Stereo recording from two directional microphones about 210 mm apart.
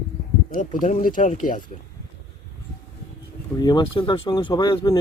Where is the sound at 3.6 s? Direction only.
20° left (ahead or behind).